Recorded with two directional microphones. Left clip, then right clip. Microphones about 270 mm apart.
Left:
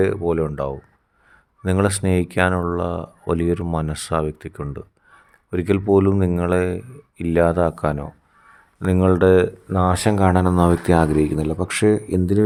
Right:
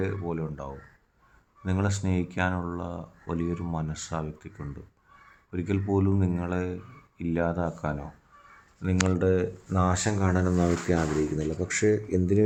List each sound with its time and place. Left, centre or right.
0.0 s speech: left
9.6 s speech: left